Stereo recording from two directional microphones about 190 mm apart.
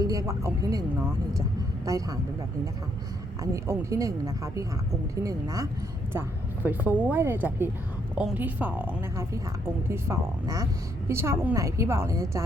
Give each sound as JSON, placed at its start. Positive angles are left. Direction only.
{"t": 0.0, "sound": "a woman's voice", "side_deg": -15}
{"t": 3.5, "sound": "a woman's voice", "side_deg": -15}
{"t": 5.2, "sound": "a woman's voice", "side_deg": -20}